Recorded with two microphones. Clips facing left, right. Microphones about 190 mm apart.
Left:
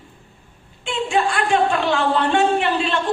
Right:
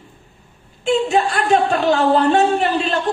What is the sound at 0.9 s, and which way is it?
A woman's voice, 40° right (ahead or behind).